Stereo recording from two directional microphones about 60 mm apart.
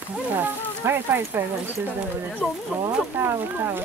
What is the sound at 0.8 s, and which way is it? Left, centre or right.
Speech, right.